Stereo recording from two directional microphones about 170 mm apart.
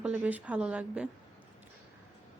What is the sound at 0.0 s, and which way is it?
A woman's voice, 10° right (ahead or behind).